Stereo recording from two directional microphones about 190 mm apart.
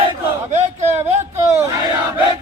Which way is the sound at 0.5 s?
35° right (ahead or behind).